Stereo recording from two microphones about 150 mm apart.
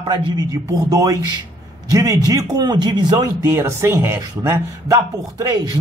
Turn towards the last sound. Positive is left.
turn(degrees=-25)  # may be behind; listen again after turning